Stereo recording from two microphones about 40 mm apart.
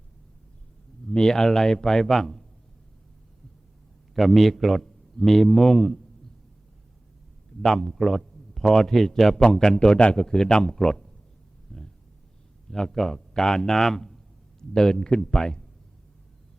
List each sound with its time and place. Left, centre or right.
1.0 s a man's voice: centre
4.1 s a man's voice: centre
7.5 s a sound: left
7.9 s a man's voice: centre
11.7 s a sound: centre
12.7 s a man's voice: centre